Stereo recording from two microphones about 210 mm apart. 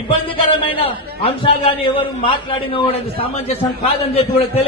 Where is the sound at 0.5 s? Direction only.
25° left (ahead or behind).